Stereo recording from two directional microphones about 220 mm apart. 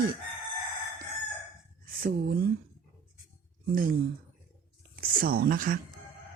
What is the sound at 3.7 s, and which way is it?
Speech, 40° right (ahead or behind).